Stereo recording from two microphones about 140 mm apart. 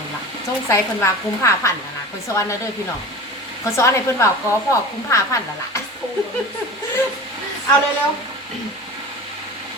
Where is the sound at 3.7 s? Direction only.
20° left (ahead or behind).